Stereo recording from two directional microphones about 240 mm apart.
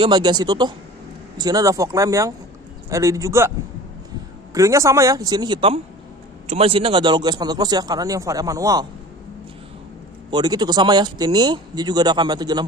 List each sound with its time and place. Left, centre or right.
0.0 s speech: centre
4.6 s speech: centre
10.3 s speech: centre